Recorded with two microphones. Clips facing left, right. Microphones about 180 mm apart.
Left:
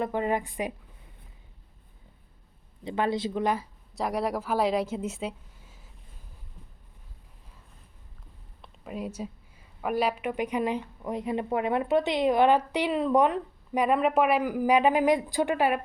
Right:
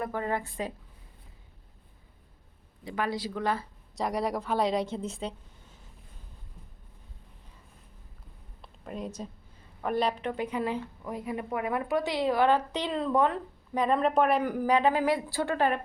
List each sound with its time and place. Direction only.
0.0 s a woman's voice: 20° left (ahead or behind)
2.8 s a woman's voice: 25° left (ahead or behind)
3.9 s a woman's voice: centre (ahead or behind)
8.6 s a woman's voice: 5° left (ahead or behind)